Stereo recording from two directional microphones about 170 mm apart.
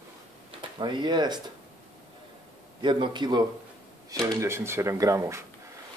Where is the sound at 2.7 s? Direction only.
30° right (ahead or behind).